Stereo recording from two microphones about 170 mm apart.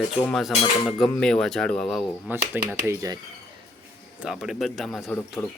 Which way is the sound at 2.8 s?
15° right (ahead or behind).